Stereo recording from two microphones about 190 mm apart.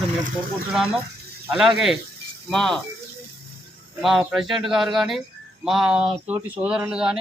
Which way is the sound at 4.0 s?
Centre (ahead or behind).